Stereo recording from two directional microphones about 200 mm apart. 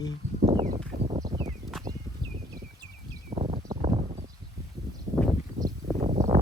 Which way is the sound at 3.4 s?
25° right (ahead or behind).